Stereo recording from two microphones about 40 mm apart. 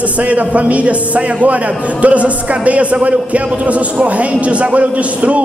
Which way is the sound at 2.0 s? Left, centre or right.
Right.